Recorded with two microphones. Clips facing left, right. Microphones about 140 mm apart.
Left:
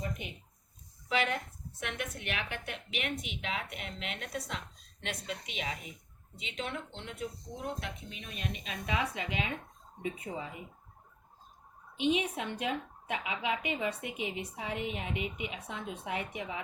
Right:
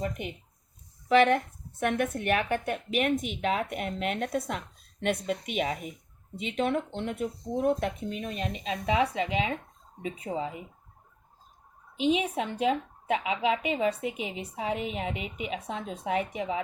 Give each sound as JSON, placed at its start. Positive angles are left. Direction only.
{"t": 1.0, "sound": "speech", "side_deg": -50}
{"t": 12.0, "sound": "speech", "side_deg": -30}